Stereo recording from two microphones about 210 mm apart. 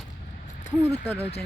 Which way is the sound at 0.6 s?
35° left (ahead or behind).